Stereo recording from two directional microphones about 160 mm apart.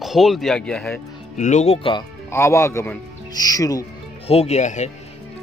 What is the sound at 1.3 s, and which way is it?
Speech, 50° left (ahead or behind).